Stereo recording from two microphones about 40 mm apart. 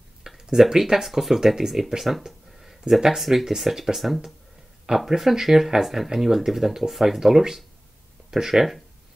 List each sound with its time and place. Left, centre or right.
0.3 s a sound: centre
0.6 s speech: centre
2.9 s speech: right
3.2 s speech: centre